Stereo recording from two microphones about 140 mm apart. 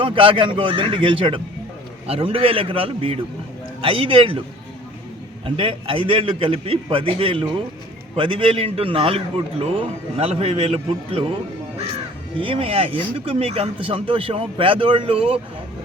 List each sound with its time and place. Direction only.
0.0 s speech: 40° right (ahead or behind)
5.5 s a man's voice: 40° right (ahead or behind)
12.4 s speech: 40° right (ahead or behind)